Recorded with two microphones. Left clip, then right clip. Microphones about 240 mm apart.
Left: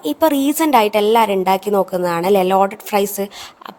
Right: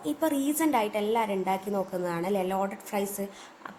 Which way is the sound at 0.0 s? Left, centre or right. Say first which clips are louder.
Left 13 dB; left.